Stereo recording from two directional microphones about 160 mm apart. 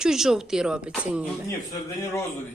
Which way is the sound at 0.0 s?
5° right (ahead or behind).